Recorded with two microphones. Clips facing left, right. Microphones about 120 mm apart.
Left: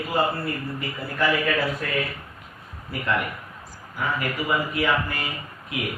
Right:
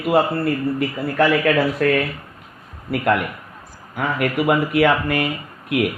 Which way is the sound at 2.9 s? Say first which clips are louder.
Right 7 dB; 60° right (ahead or behind).